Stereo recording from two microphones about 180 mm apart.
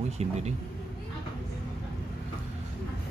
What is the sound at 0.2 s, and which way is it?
Speech, 35° right (ahead or behind).